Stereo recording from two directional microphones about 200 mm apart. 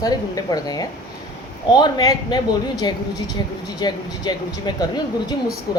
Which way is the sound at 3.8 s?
20° left (ahead or behind).